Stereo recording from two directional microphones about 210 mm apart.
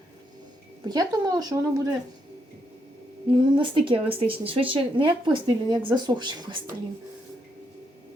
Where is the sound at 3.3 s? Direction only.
25° right (ahead or behind).